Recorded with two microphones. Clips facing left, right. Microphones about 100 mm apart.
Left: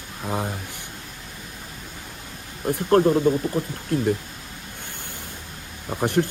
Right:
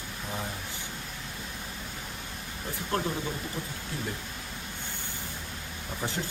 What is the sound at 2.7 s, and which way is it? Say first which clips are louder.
Speech: left 14 dB; 50° left (ahead or behind).